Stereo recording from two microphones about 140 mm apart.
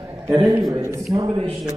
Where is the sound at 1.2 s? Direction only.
40° right (ahead or behind).